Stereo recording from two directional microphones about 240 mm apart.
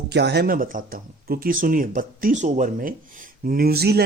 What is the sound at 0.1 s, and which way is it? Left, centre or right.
Speech, right.